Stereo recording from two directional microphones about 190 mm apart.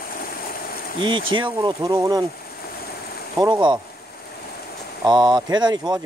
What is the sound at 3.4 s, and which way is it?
Speech, 20° right (ahead or behind).